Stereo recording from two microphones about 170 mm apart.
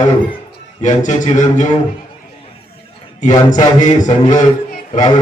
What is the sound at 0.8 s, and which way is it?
Speech, 45° left (ahead or behind).